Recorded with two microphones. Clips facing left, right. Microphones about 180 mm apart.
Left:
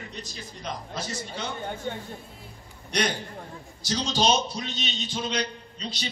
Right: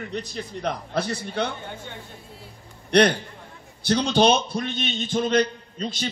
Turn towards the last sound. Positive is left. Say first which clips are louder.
# right 6 dB
turn(degrees=-50)  # may be behind; listen again after turning